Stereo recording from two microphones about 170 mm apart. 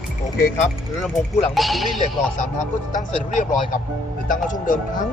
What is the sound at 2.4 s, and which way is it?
Speech, 50° left (ahead or behind).